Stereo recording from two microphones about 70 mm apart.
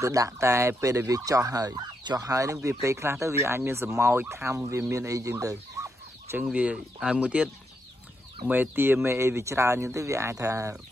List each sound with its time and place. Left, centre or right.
0.0 s fowl: right
2.8 s speech: right
6.3 s speech: centre
8.5 s speech: right
9.9 s fowl: right